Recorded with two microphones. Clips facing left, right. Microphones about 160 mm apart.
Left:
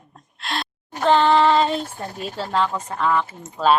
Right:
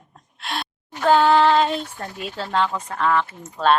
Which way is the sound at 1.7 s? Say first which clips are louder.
Left 1 dB; 40° left (ahead or behind).